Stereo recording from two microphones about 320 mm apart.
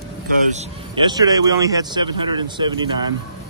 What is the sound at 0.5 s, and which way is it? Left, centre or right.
Speech, centre.